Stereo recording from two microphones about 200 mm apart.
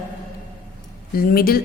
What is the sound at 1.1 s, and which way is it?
Speech, 50° left (ahead or behind).